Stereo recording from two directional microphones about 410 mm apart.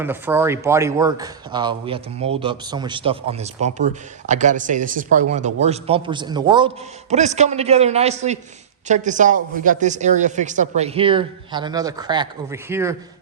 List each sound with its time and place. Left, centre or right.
0.0 s speech: centre